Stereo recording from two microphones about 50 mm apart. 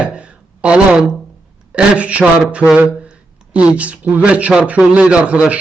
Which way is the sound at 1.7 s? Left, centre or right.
Right.